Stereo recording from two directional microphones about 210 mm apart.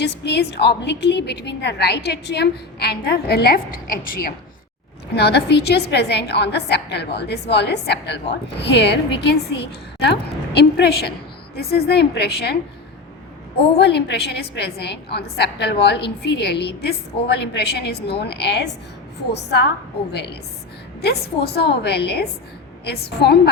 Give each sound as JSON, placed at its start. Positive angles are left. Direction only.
{"t": 0.0, "sound": "a woman's voice", "side_deg": 55}
{"t": 13.7, "sound": "a woman's voice", "side_deg": 50}
{"t": 21.0, "sound": "a woman's voice", "side_deg": 50}